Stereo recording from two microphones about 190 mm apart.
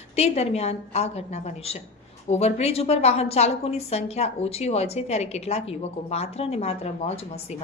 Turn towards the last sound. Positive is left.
turn(degrees=35)  # may be behind; listen again after turning